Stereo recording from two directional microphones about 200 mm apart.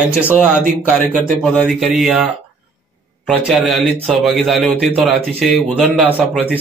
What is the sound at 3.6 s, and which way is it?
Speech, centre (ahead or behind).